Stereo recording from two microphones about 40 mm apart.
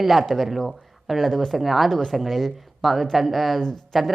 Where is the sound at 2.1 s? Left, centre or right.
Centre.